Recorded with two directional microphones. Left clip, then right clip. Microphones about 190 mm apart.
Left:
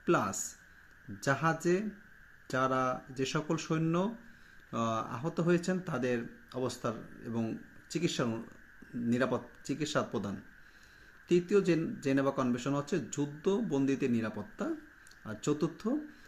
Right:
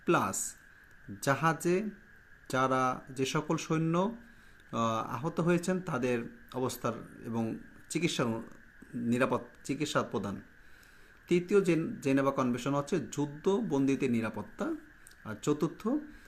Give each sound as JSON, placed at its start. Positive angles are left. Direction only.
{"t": 0.0, "sound": "speech", "side_deg": -15}